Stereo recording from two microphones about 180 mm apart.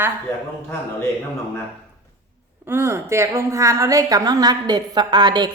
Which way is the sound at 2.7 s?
15° right (ahead or behind).